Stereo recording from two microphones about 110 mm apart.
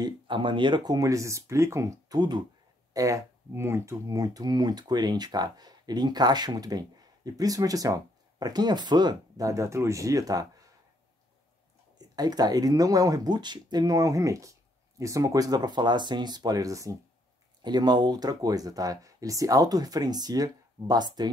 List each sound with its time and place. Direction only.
0.0 s speech: 45° right (ahead or behind)
0.9 s speech: 30° right (ahead or behind)
12.0 s speech: 35° right (ahead or behind)